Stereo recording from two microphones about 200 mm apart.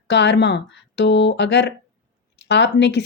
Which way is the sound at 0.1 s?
60° left (ahead or behind).